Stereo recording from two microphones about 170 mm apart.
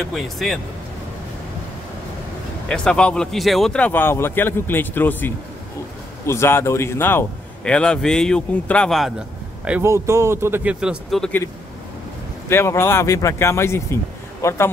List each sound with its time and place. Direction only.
0.1 s speech: centre (ahead or behind)
2.7 s a man's voice: 5° left (ahead or behind)
9.7 s speech: 15° right (ahead or behind); by 11.4 s 5° left (ahead or behind)
12.4 s a man's voice: 15° left (ahead or behind)